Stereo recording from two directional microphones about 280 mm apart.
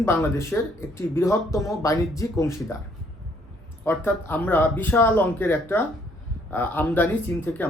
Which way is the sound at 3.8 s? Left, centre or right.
Centre.